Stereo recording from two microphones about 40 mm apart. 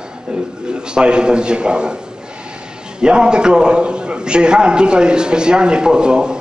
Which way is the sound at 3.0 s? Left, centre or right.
Right.